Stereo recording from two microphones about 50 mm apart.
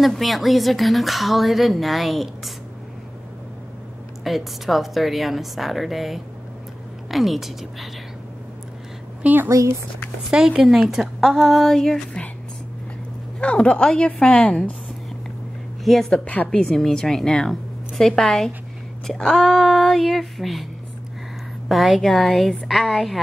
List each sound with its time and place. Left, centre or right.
0.0 s speech: centre
4.2 s speech: centre
9.2 s a woman's voice: right
9.5 s speech: right
10.3 s speech: centre
13.4 s a woman's voice: left
15.8 s a woman's voice: centre
21.6 s speech: centre